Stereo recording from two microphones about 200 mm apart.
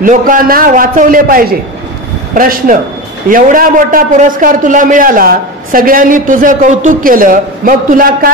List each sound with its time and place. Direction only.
0.0 s a man's voice: 40° right (ahead or behind)